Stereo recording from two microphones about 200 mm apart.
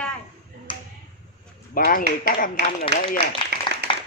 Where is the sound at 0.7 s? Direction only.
25° left (ahead or behind).